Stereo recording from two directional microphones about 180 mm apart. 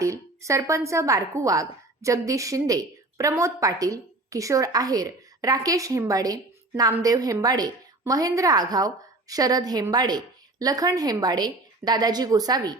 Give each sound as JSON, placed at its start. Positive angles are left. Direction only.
{"t": 0.0, "sound": "a woman's voice", "side_deg": -15}